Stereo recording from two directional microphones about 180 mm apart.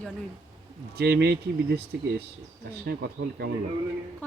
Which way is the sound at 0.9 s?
65° right (ahead or behind).